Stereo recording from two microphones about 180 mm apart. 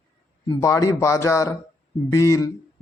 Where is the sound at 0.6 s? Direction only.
15° left (ahead or behind).